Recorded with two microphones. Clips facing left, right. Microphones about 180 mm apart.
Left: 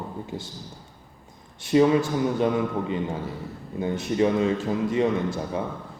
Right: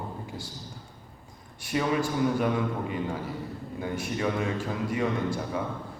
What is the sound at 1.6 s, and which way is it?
Speech, 25° left (ahead or behind).